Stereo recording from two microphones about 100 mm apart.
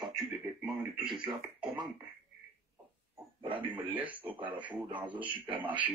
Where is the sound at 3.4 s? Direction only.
15° right (ahead or behind).